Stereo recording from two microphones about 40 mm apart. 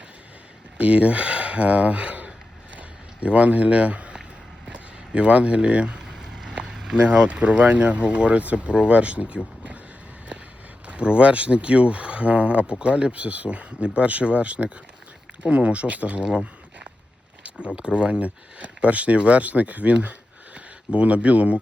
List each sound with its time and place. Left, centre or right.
0.8 s speech: right
2.7 s a sound: right
4.7 s speech: right
6.1 s a sound: centre
6.7 s speech: centre
10.8 s speech: right
17.7 s speech: right